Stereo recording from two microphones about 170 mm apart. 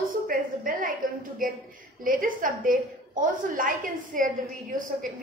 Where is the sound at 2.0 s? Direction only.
55° right (ahead or behind).